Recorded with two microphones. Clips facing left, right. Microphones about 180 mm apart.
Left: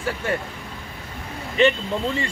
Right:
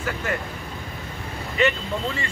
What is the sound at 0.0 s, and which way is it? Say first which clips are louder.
Speech: left 2 dB; 30° left (ahead or behind).